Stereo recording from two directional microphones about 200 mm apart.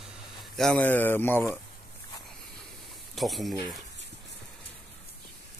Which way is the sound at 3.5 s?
20° right (ahead or behind).